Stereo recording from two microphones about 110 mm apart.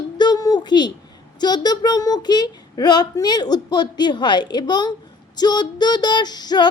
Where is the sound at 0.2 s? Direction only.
35° left (ahead or behind).